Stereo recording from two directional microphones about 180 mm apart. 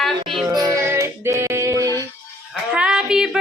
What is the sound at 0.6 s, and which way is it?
Music, 15° right (ahead or behind).